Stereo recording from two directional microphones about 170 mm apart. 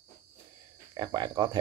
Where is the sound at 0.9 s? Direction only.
25° right (ahead or behind).